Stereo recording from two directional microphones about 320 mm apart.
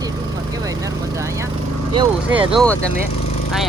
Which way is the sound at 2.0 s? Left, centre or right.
Centre.